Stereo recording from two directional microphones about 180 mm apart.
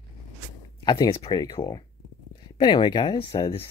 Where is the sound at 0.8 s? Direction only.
25° left (ahead or behind).